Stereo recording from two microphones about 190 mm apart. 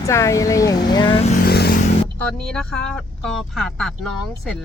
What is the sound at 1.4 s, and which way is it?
Vehicle, 55° left (ahead or behind).